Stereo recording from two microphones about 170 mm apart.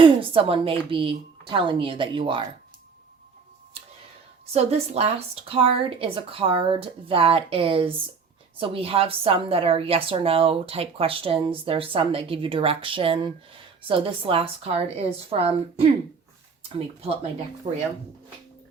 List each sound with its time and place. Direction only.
0.0 s a woman's voice: 30° right (ahead or behind)
4.5 s a woman's voice: 40° right (ahead or behind)